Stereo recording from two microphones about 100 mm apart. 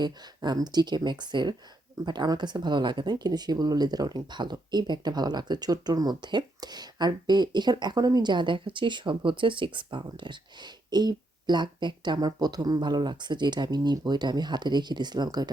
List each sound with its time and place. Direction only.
0.0 s speech: 40° right (ahead or behind)